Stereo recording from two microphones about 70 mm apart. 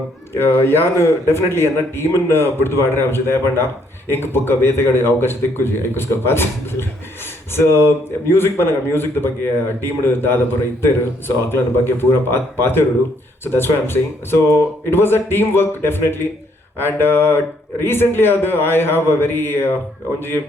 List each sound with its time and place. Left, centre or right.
0.4 s speech: left